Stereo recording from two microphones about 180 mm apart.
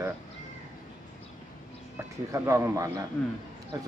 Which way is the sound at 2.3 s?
15° right (ahead or behind).